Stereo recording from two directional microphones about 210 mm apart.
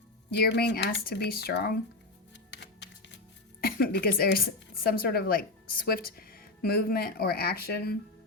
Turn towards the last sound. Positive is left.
turn(degrees=50)  # may be behind; listen again after turning